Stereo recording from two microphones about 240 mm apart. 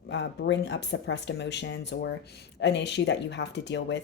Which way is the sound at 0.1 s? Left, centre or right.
Left.